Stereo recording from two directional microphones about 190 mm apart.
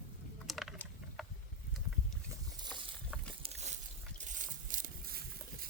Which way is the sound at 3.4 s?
35° right (ahead or behind).